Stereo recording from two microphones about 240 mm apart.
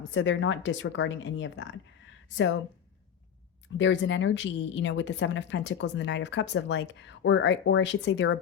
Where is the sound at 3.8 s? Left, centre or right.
Left.